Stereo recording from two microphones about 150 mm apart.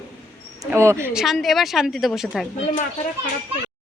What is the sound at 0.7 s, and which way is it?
Speech, 15° right (ahead or behind).